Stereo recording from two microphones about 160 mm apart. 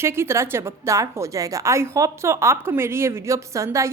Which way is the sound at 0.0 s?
15° right (ahead or behind).